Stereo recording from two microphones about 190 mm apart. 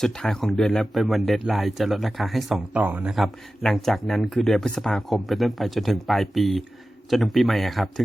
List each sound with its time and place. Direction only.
0.0 s a man's voice: 5° left (ahead or behind)